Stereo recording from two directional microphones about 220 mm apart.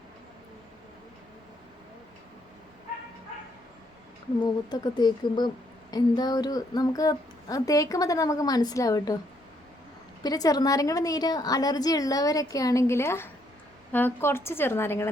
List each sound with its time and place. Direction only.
4.4 s speech: 20° left (ahead or behind)
10.2 s speech: 15° left (ahead or behind)